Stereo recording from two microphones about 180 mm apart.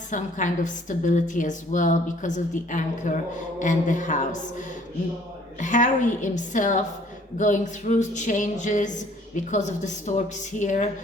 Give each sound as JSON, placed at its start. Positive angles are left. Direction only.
{"t": 0.1, "sound": "a woman's voice", "side_deg": 45}
{"t": 5.5, "sound": "a woman's voice", "side_deg": 45}